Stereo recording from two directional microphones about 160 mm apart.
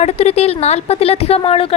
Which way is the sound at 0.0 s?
40° left (ahead or behind).